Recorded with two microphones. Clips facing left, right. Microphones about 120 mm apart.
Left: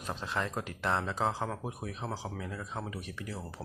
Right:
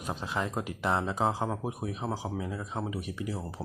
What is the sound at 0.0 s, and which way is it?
Speech, 10° right (ahead or behind).